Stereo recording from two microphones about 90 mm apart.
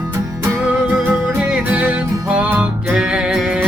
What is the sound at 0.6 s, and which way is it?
Music, 5° right (ahead or behind).